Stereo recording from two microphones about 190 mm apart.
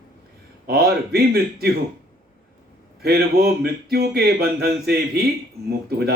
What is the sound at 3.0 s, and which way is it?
Speech, 55° right (ahead or behind).